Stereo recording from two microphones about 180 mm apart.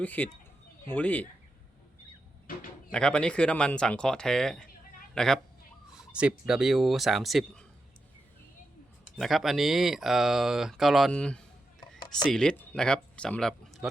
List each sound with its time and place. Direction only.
0.0 s speech: 10° left (ahead or behind)
2.9 s speech: 5° left (ahead or behind)
9.1 s speech: centre (ahead or behind)
11.8 s a sound: 25° left (ahead or behind)
12.3 s speech: 5° left (ahead or behind)